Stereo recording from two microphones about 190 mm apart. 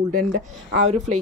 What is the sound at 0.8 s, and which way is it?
Speech, 35° right (ahead or behind).